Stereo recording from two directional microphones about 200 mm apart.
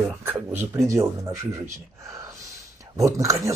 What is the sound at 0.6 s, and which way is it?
Speech, 15° right (ahead or behind).